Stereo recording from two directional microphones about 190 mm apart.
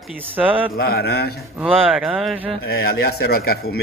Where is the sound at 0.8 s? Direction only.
55° left (ahead or behind).